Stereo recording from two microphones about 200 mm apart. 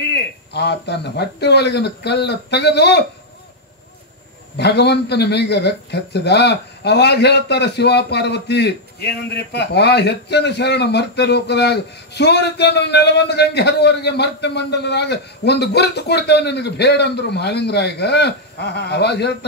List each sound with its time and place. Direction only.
0.1 s a man's voice: 55° left (ahead or behind)
4.6 s a man's voice: 55° left (ahead or behind)